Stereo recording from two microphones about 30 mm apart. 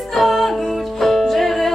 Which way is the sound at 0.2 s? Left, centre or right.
Centre.